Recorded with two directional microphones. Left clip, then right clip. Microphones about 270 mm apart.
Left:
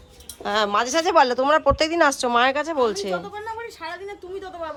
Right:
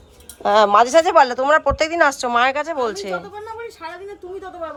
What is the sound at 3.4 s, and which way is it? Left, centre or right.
Speech, centre.